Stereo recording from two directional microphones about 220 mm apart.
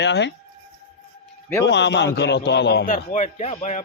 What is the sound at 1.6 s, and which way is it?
A man's voice, 55° left (ahead or behind).